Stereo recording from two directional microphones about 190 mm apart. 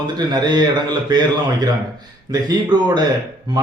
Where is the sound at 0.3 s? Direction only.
20° right (ahead or behind).